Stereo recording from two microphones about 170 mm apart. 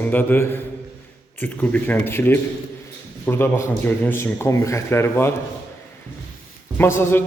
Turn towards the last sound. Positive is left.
turn(degrees=15)  # may be behind; listen again after turning